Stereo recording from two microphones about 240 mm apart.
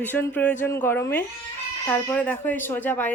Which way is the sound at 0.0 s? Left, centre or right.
Centre.